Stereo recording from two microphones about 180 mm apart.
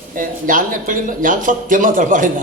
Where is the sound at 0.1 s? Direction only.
50° right (ahead or behind).